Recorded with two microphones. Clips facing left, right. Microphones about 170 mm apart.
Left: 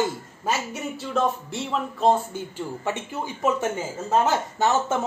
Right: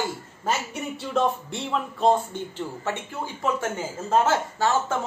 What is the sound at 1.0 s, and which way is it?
A man's voice, centre (ahead or behind).